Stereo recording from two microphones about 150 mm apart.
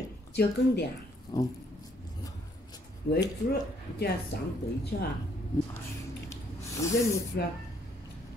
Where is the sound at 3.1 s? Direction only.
90° left.